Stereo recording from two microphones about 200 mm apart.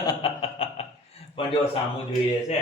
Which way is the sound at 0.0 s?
25° left (ahead or behind).